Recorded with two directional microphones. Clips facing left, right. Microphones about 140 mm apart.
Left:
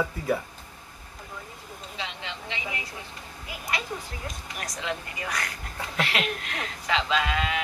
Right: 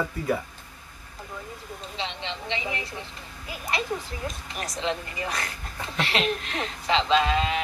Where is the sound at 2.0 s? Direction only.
25° right (ahead or behind).